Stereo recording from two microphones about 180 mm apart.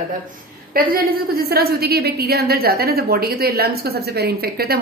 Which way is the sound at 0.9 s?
55° right (ahead or behind).